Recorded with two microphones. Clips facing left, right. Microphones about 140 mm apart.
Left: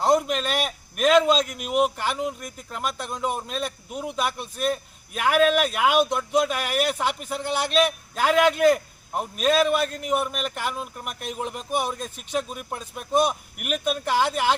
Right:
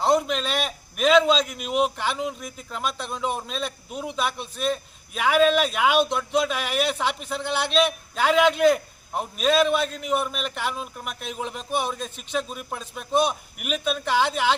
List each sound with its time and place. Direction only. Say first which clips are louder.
0.0 s a man's voice: even; 5° left (ahead or behind)
9.8 s a man's voice: left 1 dB; 50° left (ahead or behind)
10.1 s a man's voice: even; 5° left (ahead or behind)